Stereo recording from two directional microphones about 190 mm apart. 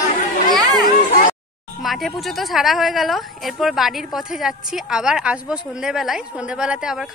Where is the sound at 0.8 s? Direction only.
45° left (ahead or behind).